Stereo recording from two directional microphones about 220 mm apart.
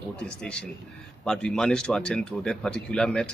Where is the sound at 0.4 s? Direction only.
5° left (ahead or behind).